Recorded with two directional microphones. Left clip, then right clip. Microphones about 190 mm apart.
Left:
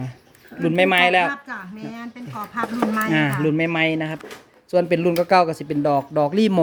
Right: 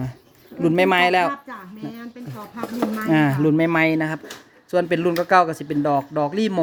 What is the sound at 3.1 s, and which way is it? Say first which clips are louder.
Speech: right 2 dB; 15° right (ahead or behind).